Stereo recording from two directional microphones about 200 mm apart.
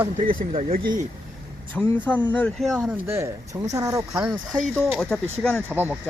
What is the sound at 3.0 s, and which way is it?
Speech, 15° right (ahead or behind).